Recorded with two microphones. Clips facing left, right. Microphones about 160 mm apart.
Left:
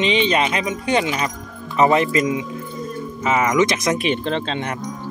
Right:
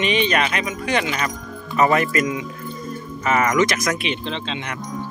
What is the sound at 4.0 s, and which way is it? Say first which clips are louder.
Speech: left 5 dB; 45° left (ahead or behind).